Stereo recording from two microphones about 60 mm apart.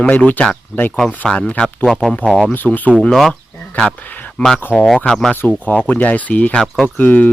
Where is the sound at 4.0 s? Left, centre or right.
Left.